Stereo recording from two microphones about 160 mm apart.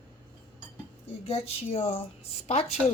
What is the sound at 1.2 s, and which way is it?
Speech, 40° left (ahead or behind).